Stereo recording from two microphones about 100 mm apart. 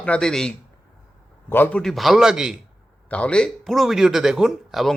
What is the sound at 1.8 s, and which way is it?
Speech, centre (ahead or behind).